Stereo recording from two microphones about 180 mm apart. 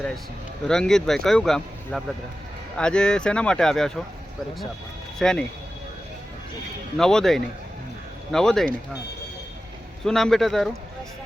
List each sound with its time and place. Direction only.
0.7 s speech: 5° left (ahead or behind)
5.2 s speech: 5° left (ahead or behind)
6.9 s speech: 5° left (ahead or behind)
10.0 s speech: 5° left (ahead or behind)